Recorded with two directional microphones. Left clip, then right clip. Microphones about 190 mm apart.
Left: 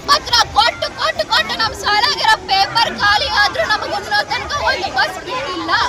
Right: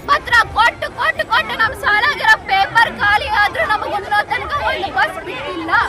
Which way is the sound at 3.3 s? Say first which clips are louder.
Even; 20° right (ahead or behind).